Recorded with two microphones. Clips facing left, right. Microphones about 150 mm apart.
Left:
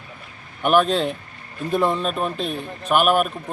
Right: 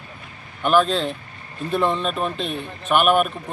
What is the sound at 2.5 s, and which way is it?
Speech, 40° left (ahead or behind).